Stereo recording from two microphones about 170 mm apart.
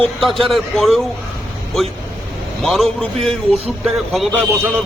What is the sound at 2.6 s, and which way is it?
A man's voice, centre (ahead or behind).